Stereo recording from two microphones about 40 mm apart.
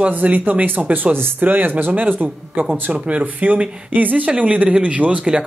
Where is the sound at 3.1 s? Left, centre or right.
Right.